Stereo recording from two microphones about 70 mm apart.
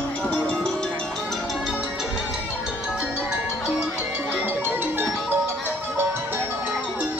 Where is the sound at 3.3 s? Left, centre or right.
Centre.